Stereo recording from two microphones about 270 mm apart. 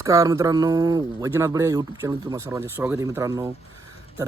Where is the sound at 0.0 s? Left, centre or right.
Centre.